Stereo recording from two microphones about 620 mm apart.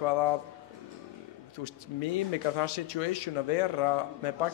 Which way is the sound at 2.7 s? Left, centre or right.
Left.